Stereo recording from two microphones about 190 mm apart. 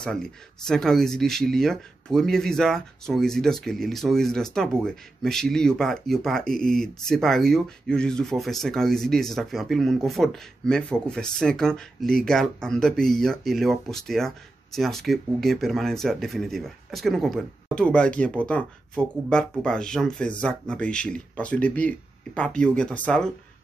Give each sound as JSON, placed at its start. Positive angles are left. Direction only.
{"t": 0.0, "sound": "speech", "side_deg": 5}